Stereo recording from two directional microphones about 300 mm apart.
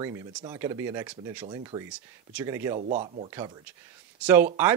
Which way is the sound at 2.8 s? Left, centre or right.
Right.